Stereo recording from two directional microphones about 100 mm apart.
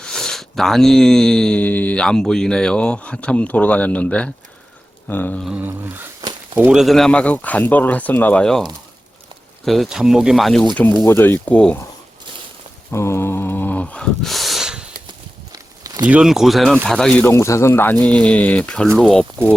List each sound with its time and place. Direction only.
0.0 s speech: 5° left (ahead or behind)
5.5 s a sound: 15° right (ahead or behind)
6.6 s speech: 10° right (ahead or behind)
6.8 s speech: 5° left (ahead or behind)
9.6 s speech: centre (ahead or behind)
11.0 s speech: 25° left (ahead or behind)
12.9 s a sound: 25° left (ahead or behind); by 14.8 s 5° right (ahead or behind)
15.5 s walk: 40° right (ahead or behind)
16.0 s speech: 10° right (ahead or behind); by 17.2 s 10° left (ahead or behind)
17.2 s speech: 25° left (ahead or behind)
18.0 s speech: 10° left (ahead or behind)